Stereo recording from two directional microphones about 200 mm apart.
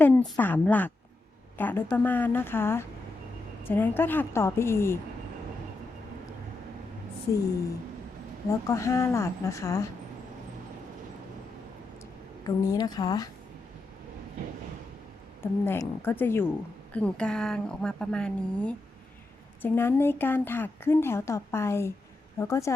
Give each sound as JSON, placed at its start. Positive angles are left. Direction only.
{"t": 0.0, "sound": "speech", "side_deg": 10}
{"t": 8.4, "sound": "speech", "side_deg": 15}
{"t": 12.5, "sound": "a woman's voice", "side_deg": 20}
{"t": 15.4, "sound": "a woman's voice", "side_deg": 10}